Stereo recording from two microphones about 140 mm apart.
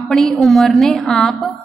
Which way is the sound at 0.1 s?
5° left (ahead or behind).